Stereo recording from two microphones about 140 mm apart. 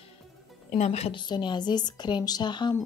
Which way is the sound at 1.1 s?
35° left (ahead or behind).